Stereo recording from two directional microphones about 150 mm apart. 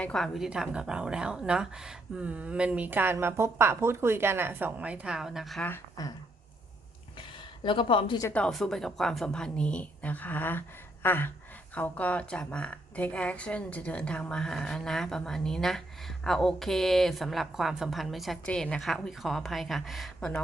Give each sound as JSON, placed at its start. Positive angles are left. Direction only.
{"t": 0.0, "sound": "a woman's voice", "side_deg": 5}
{"t": 6.0, "sound": "a sound", "side_deg": 25}
{"t": 7.2, "sound": "a sound", "side_deg": 35}
{"t": 8.3, "sound": "a woman's voice", "side_deg": 5}
{"t": 11.0, "sound": "gasp", "side_deg": 15}
{"t": 11.7, "sound": "a woman's voice", "side_deg": 10}